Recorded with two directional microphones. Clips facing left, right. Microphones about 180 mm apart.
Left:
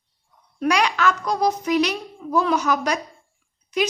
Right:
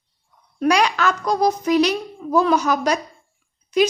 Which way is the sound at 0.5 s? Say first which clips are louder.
Right 3 dB; 35° right (ahead or behind).